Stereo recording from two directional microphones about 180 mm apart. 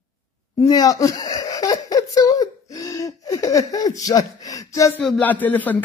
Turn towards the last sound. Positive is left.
turn(degrees=10)  # may be behind; listen again after turning